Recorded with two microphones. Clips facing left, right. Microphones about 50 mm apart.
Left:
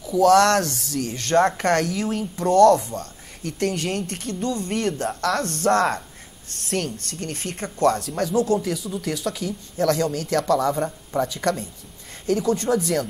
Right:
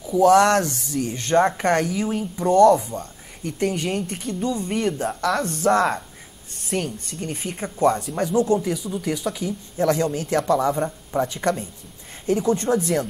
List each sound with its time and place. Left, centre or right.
0.0 s speech: centre
12.6 s speech: centre